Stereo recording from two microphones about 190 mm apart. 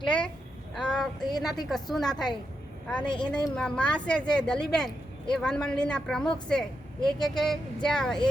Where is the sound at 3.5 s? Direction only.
5° left (ahead or behind).